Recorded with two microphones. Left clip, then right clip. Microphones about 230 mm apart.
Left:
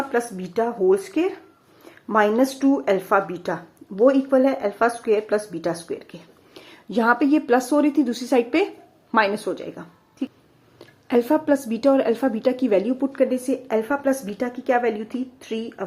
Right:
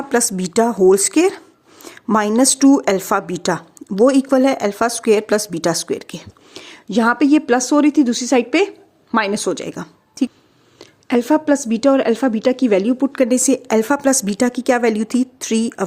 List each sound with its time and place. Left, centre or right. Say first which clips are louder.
0.1 s speech: right 6 dB; right
10.8 s speech: right 2 dB; right